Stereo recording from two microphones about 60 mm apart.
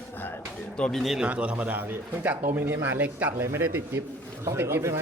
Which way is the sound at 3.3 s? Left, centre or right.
Right.